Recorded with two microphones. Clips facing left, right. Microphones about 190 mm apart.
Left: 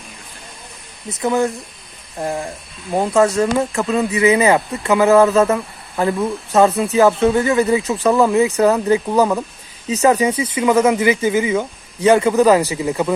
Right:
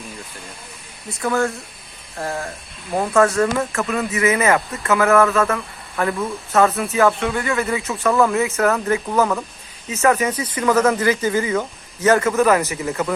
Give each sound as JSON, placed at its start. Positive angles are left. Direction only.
{"t": 1.1, "sound": "speech", "side_deg": 20}
{"t": 6.9, "sound": "speech", "side_deg": 30}